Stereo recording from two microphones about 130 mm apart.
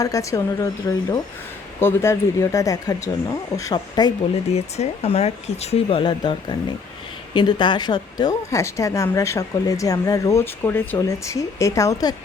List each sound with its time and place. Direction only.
0.0 s a woman's voice: 25° left (ahead or behind)
4.4 s a woman's voice: 55° left (ahead or behind); by 12.1 s 25° left (ahead or behind)